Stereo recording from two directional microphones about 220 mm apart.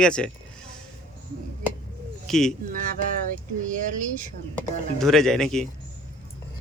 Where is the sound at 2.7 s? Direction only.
35° right (ahead or behind).